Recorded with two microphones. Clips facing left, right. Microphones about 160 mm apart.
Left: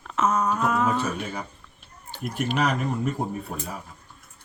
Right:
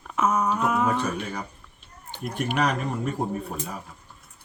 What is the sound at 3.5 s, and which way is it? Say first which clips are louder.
Speech: right 1 dB; 5° right (ahead or behind).